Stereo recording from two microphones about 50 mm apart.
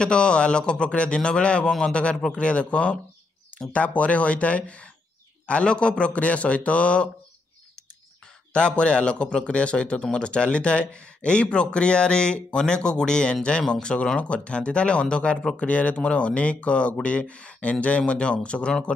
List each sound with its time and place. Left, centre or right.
0.0 s a man's voice: centre
8.5 s speech: left